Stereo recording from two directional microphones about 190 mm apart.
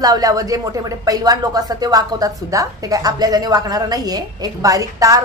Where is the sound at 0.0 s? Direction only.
20° right (ahead or behind).